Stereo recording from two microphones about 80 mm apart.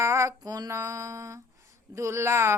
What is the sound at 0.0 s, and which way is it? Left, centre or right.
Female singing, right.